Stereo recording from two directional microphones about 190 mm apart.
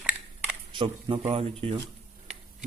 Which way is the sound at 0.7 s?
25° right (ahead or behind).